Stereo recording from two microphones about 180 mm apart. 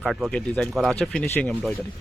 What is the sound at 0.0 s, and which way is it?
Speech, centre (ahead or behind).